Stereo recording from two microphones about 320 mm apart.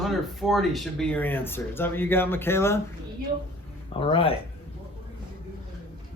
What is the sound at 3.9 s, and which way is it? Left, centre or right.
Speech, centre.